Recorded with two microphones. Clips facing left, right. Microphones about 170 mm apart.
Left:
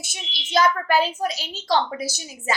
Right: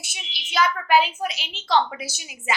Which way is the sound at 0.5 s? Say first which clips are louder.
Left 1 dB; 40° left (ahead or behind).